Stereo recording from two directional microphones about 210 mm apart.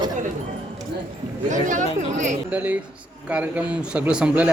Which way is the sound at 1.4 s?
35° right (ahead or behind).